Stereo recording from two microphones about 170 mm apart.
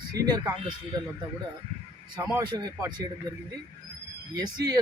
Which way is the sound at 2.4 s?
25° right (ahead or behind).